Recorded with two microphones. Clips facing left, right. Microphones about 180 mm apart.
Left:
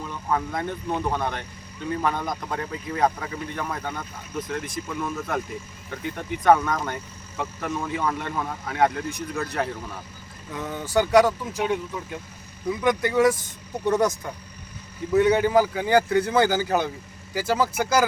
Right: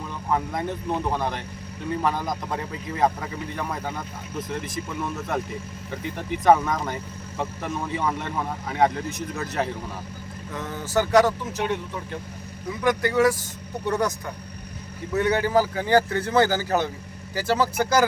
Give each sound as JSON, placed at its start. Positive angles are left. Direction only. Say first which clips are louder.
{"t": 0.1, "sound": "speech", "louder": "right 1 dB", "side_deg": -5}
{"t": 6.4, "sound": "speech", "louder": "even", "side_deg": 0}
{"t": 10.5, "sound": "a man's voice", "louder": "left 1 dB", "side_deg": 15}
{"t": 12.8, "sound": "speech", "louder": "even", "side_deg": 20}
{"t": 15.1, "sound": "a man's voice", "louder": "left 3 dB", "side_deg": 15}